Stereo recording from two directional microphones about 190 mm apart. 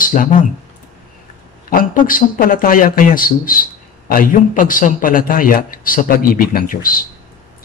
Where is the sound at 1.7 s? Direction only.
45° left (ahead or behind).